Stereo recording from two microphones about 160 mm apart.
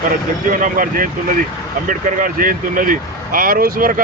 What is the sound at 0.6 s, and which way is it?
Speech, 60° right (ahead or behind).